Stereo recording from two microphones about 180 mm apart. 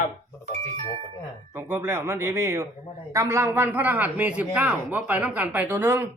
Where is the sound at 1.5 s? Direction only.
15° right (ahead or behind).